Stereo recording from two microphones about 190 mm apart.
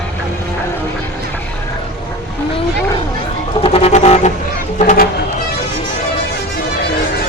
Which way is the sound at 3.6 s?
30° left (ahead or behind).